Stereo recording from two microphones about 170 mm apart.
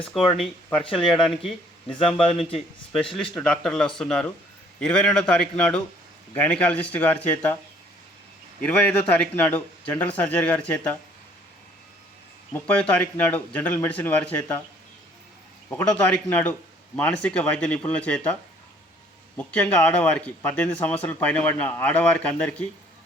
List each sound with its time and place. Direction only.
0.3 s speech: centre (ahead or behind)
2.1 s a man's voice: 35° left (ahead or behind)
3.2 s speech: 5° left (ahead or behind)
8.6 s speech: 5° left (ahead or behind)
12.5 s speech: 10° left (ahead or behind)
15.7 s speech: 5° left (ahead or behind)
19.4 s speech: 5° left (ahead or behind)